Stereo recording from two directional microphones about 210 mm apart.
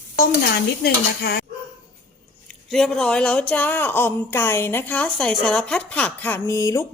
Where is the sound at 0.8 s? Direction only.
50° left (ahead or behind).